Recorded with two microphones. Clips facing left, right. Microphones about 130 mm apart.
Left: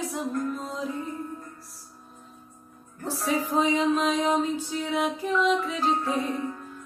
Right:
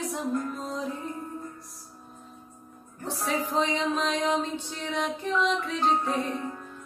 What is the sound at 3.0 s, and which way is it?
Music, centre (ahead or behind).